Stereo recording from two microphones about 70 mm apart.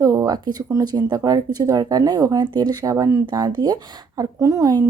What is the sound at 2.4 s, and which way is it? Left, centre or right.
Speech, right.